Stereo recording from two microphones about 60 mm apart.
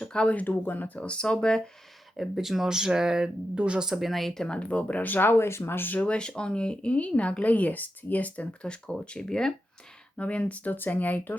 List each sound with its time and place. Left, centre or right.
0.0 s speech: centre; by 0.9 s left
0.9 s speech: centre
2.1 s speech: centre
3.8 s speech: centre; by 6.0 s left
6.0 s speech: centre